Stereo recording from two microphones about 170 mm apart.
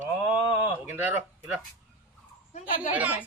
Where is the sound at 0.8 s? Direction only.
10° right (ahead or behind).